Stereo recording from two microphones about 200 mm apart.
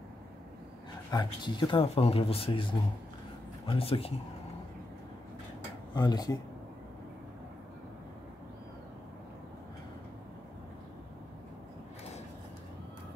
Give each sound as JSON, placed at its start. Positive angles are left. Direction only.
{"t": 1.1, "sound": "speech", "side_deg": 20}
{"t": 3.6, "sound": "speech", "side_deg": 25}
{"t": 5.9, "sound": "speech", "side_deg": 20}